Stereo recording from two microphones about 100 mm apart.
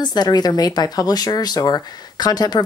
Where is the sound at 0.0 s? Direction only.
45° left (ahead or behind).